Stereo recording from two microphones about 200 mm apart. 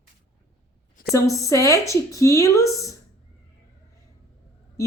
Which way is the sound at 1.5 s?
15° left (ahead or behind).